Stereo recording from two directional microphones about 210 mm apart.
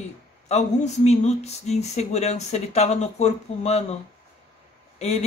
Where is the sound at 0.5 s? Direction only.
35° left (ahead or behind).